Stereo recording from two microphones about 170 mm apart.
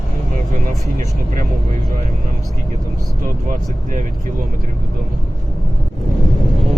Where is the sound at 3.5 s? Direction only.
50° right (ahead or behind).